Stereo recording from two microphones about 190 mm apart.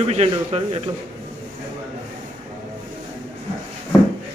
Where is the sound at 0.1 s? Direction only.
35° right (ahead or behind).